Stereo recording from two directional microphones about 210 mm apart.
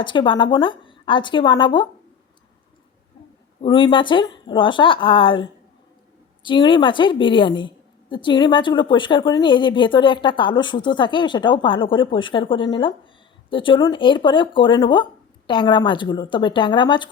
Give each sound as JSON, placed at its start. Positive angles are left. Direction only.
{"t": 0.0, "sound": "speech", "side_deg": 20}
{"t": 3.6, "sound": "speech", "side_deg": 25}